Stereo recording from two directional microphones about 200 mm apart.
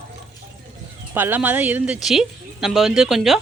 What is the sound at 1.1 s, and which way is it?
Speech, 10° right (ahead or behind).